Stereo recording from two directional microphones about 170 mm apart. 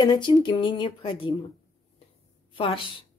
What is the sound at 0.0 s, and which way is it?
Speech, 25° left (ahead or behind).